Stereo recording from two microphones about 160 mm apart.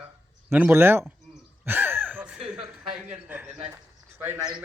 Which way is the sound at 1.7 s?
10° right (ahead or behind).